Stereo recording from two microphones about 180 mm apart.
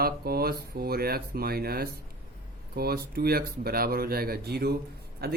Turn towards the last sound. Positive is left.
turn(degrees=-60)  # may be behind; listen again after turning